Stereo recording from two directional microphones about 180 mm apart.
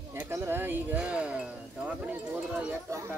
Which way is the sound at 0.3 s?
10° right (ahead or behind).